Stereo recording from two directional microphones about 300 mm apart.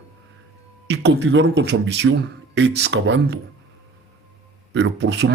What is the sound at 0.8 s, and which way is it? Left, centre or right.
Speech, right.